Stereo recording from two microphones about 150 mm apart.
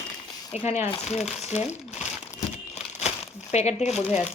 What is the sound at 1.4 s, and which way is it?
Crumpling, 50° left (ahead or behind).